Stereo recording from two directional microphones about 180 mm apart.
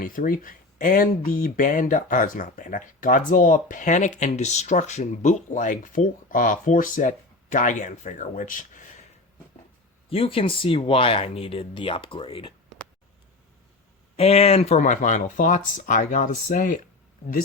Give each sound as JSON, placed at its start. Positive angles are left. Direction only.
{"t": 0.0, "sound": "speech", "side_deg": 50}
{"t": 10.1, "sound": "speech", "side_deg": 30}
{"t": 14.2, "sound": "speech", "side_deg": 35}